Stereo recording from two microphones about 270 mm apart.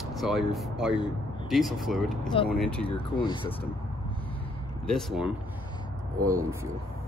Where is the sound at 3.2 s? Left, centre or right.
Centre.